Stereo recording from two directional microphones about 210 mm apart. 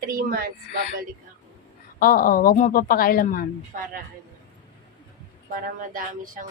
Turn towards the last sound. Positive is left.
turn(degrees=-40)  # may be behind; listen again after turning